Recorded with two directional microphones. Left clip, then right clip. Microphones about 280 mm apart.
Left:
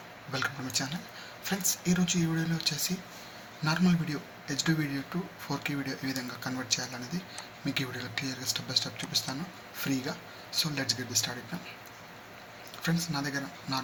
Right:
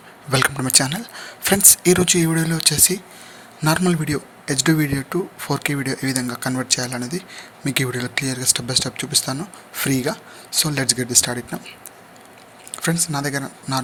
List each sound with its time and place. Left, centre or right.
0.3 s speech: right
12.8 s speech: right